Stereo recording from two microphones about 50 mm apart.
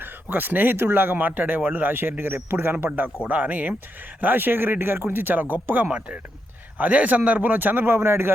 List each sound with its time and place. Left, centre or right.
0.0 s speech: right
3.2 s speech: right
7.9 s a man's voice: right